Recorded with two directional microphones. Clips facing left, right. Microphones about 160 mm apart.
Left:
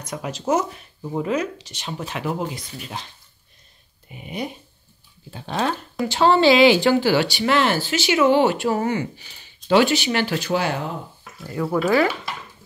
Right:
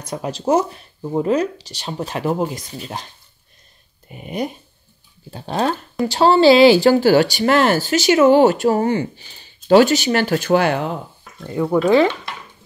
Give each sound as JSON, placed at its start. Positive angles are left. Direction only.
{"t": 0.0, "sound": "speech", "side_deg": -35}
{"t": 4.1, "sound": "speech", "side_deg": -45}
{"t": 11.4, "sound": "speech", "side_deg": -20}